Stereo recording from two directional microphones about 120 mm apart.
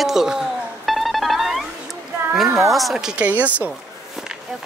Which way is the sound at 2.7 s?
Centre (ahead or behind).